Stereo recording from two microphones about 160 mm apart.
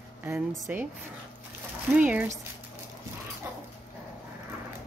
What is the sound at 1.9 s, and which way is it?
Speech, 10° right (ahead or behind).